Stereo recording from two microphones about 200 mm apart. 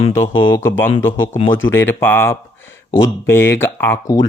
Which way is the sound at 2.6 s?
70° left (ahead or behind).